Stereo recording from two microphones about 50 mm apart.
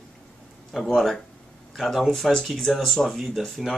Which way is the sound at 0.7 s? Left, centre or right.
Centre.